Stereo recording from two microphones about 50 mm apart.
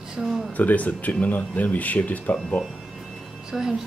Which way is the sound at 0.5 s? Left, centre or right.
Left.